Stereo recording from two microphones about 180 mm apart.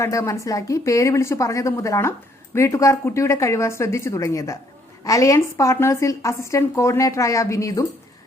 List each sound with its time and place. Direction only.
0.0 s a woman's voice: 15° left (ahead or behind)